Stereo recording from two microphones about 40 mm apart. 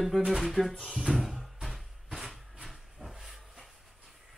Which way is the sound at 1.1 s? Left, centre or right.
Centre.